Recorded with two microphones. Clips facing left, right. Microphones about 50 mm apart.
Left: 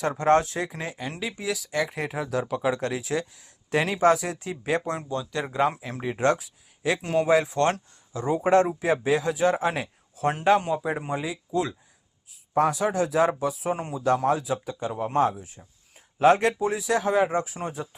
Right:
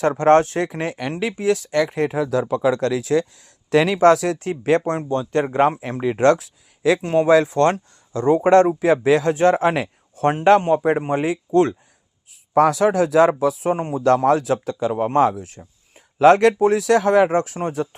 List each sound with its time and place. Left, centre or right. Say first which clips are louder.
0.0 s speech: right 7 dB; right
4.9 s speech: right 8 dB; right
7.0 s speech: right 5 dB; right
8.4 s speech: right 5 dB; right
12.5 s speech: right 7 dB; right
14.3 s speech: right 7 dB; right